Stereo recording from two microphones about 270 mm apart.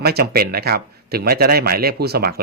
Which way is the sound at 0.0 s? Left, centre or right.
Right.